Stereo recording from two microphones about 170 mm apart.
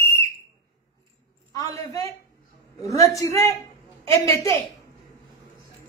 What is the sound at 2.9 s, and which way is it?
A woman's voice, 20° left (ahead or behind).